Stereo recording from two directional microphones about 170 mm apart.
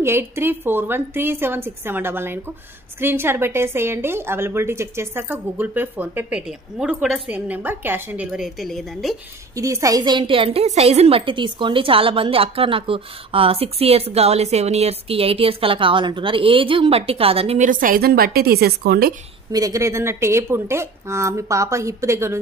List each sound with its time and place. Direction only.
0.0 s a woman's voice: 15° right (ahead or behind)
9.6 s a woman's voice: 20° right (ahead or behind); by 17.6 s 35° right (ahead or behind)
17.6 s a woman's voice: 55° right (ahead or behind)
19.5 s a woman's voice: 20° right (ahead or behind)